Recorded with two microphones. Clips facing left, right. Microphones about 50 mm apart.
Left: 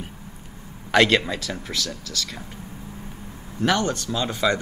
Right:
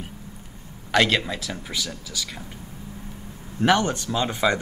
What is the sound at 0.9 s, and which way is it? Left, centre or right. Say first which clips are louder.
Speech: left 3 dB; centre.